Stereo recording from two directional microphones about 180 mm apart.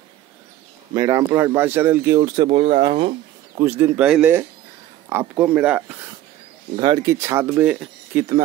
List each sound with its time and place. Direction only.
0.9 s speech: 15° right (ahead or behind)
3.5 s speech: 15° right (ahead or behind)
6.8 s speech: 20° right (ahead or behind)